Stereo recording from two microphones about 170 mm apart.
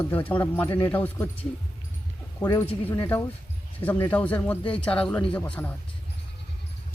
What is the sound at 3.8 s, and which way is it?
Speech, 10° left (ahead or behind).